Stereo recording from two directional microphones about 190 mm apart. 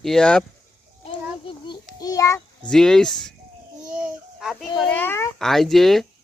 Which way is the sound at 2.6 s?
5° left (ahead or behind).